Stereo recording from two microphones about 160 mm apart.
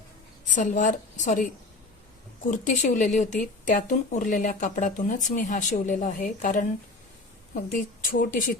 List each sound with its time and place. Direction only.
0.4 s speech: 50° left (ahead or behind)